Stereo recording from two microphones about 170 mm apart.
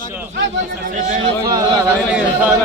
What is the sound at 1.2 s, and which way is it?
Speech, 20° right (ahead or behind).